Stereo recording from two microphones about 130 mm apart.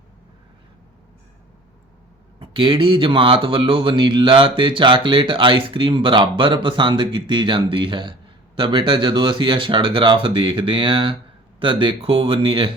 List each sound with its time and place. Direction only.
2.4 s speech: 40° right (ahead or behind)